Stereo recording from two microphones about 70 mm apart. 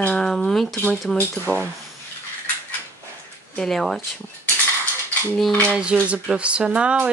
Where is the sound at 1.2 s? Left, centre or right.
Left.